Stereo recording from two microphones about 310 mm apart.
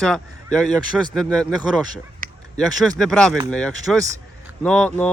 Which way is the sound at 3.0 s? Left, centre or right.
Centre.